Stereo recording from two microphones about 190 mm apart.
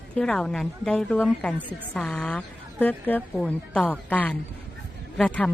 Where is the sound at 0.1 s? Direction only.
5° left (ahead or behind).